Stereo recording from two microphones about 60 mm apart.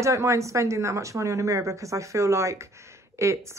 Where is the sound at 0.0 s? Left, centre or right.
Right.